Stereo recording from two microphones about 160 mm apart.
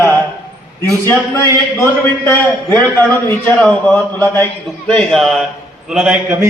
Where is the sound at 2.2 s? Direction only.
10° left (ahead or behind); by 6.1 s 5° right (ahead or behind).